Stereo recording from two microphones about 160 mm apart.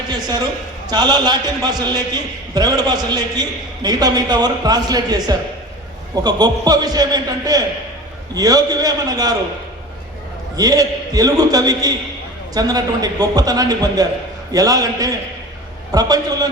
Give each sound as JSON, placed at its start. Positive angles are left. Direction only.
{"t": 0.1, "sound": "a man's voice", "side_deg": -25}
{"t": 10.6, "sound": "a man's voice", "side_deg": -25}